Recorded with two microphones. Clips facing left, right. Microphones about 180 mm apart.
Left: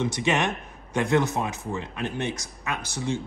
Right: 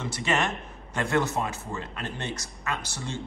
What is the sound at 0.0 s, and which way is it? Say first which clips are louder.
A man's voice: left 3 dB; 20° left (ahead or behind).